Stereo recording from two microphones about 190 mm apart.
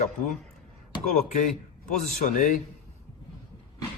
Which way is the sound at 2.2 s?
40° left (ahead or behind).